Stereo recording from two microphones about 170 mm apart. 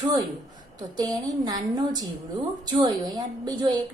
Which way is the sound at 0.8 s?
25° right (ahead or behind).